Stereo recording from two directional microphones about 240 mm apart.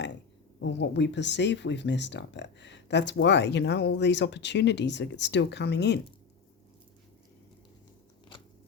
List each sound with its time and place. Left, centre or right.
0.6 s speech: left